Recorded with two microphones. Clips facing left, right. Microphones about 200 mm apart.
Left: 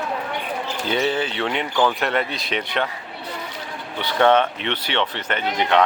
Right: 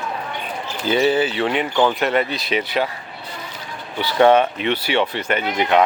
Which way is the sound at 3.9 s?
10° right (ahead or behind).